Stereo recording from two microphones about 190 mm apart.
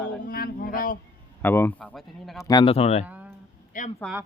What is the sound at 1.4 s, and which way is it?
A man's voice, 10° left (ahead or behind).